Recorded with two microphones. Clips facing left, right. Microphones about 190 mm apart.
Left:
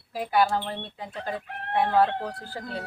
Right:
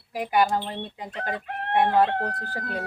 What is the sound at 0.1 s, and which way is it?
Speech, 15° right (ahead or behind).